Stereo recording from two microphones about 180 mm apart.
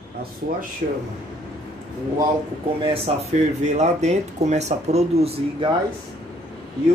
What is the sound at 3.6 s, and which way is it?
Speech, 40° right (ahead or behind).